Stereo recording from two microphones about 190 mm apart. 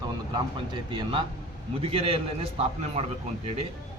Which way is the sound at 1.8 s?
30° right (ahead or behind).